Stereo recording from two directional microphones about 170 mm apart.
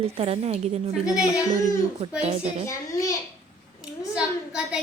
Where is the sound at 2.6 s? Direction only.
20° left (ahead or behind).